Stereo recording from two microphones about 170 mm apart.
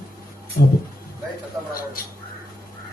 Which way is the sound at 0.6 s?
55° left (ahead or behind).